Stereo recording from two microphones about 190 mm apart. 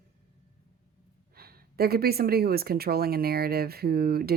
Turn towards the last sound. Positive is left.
turn(degrees=-55)  # may be behind; listen again after turning